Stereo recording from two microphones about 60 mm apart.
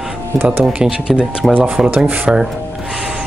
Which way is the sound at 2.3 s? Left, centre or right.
Centre.